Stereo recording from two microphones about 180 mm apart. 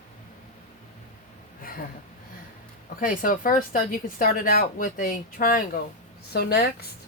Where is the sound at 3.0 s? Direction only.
50° left (ahead or behind).